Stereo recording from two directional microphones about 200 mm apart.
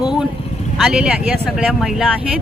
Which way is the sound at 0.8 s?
5° right (ahead or behind).